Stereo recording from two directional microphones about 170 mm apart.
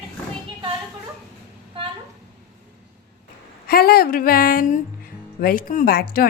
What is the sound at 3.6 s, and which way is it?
Speech, 60° left (ahead or behind).